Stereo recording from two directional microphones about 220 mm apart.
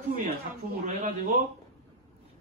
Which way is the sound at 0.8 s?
35° right (ahead or behind).